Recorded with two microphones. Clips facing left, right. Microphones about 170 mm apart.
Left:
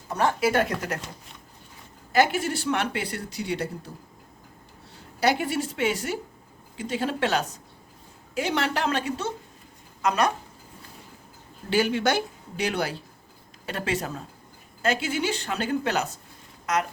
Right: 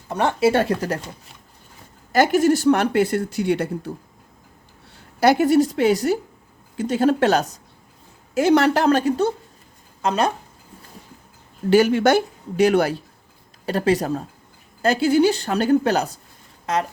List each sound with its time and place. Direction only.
0.1 s speech: 25° right (ahead or behind)
2.1 s speech: 40° right (ahead or behind)
5.2 s a woman's voice: 45° right (ahead or behind)
10.0 s speech: 30° right (ahead or behind)
11.7 s speech: 45° right (ahead or behind)
13.7 s a woman's voice: 35° right (ahead or behind)